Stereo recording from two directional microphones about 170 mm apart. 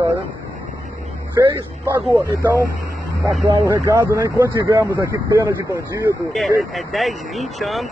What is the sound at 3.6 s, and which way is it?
Speech, 15° right (ahead or behind).